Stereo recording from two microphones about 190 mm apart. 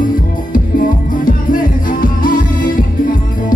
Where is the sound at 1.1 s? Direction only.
45° left (ahead or behind).